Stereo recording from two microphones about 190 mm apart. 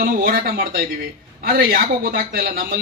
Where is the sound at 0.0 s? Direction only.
50° right (ahead or behind).